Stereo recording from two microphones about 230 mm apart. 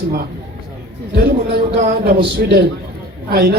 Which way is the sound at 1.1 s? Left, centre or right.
Right.